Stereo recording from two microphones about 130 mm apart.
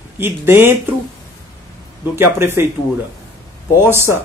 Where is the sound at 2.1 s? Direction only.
20° right (ahead or behind).